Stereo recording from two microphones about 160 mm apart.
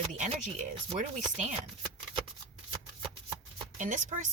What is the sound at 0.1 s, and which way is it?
Chopping, 50° right (ahead or behind).